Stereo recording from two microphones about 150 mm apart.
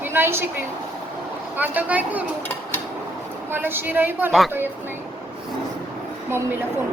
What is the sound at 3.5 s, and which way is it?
A woman's voice, 15° right (ahead or behind).